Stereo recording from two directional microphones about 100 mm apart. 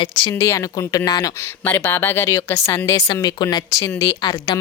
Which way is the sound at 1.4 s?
20° left (ahead or behind).